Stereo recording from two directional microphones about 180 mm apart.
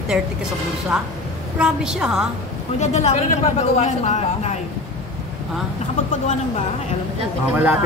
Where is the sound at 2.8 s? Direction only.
40° left (ahead or behind).